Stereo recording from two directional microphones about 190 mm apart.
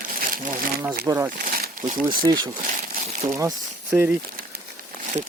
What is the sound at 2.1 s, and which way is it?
Speech, 20° right (ahead or behind).